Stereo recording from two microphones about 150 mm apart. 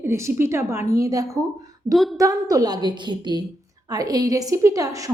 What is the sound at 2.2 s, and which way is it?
A woman's voice, 20° right (ahead or behind).